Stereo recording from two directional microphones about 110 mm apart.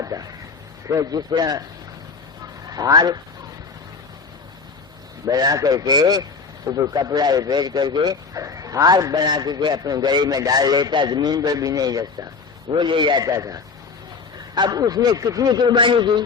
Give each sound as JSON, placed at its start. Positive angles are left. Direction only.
{"t": 0.0, "sound": "speech", "side_deg": -30}
{"t": 2.6, "sound": "a man's voice", "side_deg": -35}
{"t": 5.2, "sound": "a man's voice", "side_deg": -35}
{"t": 13.2, "sound": "a man's voice", "side_deg": -30}